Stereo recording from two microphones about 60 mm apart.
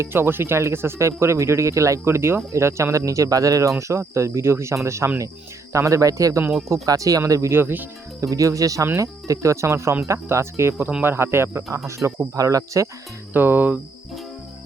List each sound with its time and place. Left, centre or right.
0.1 s speech: right
7.5 s speech: right
8.2 s speech: right
11.9 s speech: right
12.4 s speech: right
13.3 s speech: right